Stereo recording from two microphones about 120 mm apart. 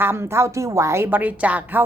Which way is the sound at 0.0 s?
20° right (ahead or behind).